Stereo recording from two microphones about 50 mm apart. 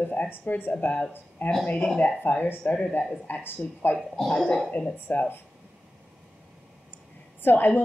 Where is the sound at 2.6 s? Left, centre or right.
Left.